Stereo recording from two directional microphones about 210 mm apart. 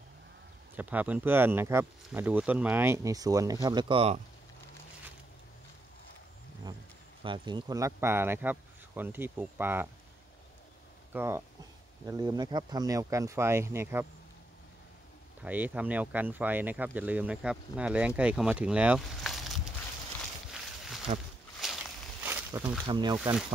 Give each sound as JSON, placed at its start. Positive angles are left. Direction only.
{"t": 0.7, "sound": "speech", "side_deg": -5}
{"t": 7.2, "sound": "speech", "side_deg": -25}
{"t": 11.1, "sound": "speech", "side_deg": -10}
{"t": 15.4, "sound": "speech", "side_deg": -5}
{"t": 20.8, "sound": "a sound", "side_deg": 0}
{"t": 21.6, "sound": "walk", "side_deg": 0}
{"t": 22.2, "sound": "a sound", "side_deg": -10}
{"t": 22.8, "sound": "speech", "side_deg": -20}